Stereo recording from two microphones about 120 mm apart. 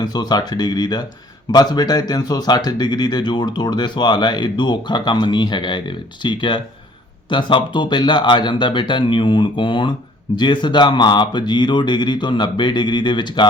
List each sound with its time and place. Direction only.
0.0 s speech: 35° left (ahead or behind)